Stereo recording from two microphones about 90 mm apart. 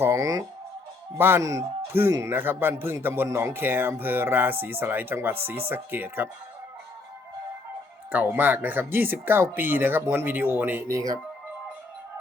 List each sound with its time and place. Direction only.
0.0 s speech: 30° right (ahead or behind)
1.4 s speech: 40° right (ahead or behind)
1.9 s speech: 25° right (ahead or behind)
8.1 s speech: 20° right (ahead or behind)